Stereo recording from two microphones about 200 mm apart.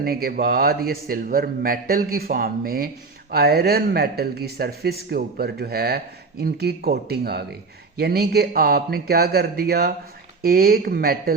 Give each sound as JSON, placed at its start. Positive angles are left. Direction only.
{"t": 0.0, "sound": "a man's voice", "side_deg": -50}